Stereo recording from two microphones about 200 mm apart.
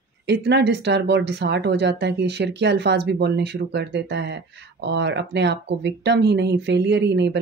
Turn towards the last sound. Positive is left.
turn(degrees=-60)  # may be behind; listen again after turning